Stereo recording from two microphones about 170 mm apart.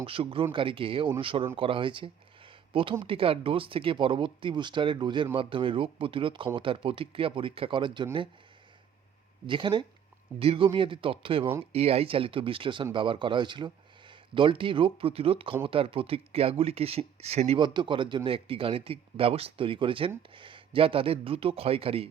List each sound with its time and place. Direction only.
0.0 s speech: 30° right (ahead or behind)
9.5 s speech: 25° right (ahead or behind)
17.6 s speech: 25° right (ahead or behind)